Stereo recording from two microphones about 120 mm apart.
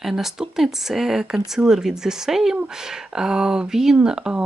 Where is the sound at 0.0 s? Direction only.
5° right (ahead or behind).